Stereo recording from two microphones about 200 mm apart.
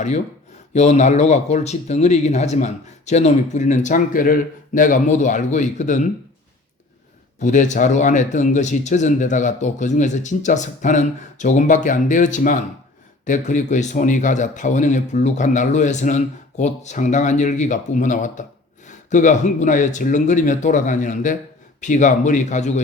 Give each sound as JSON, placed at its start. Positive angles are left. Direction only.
{"t": 0.7, "sound": "speech", "side_deg": 35}
{"t": 7.3, "sound": "speech", "side_deg": 40}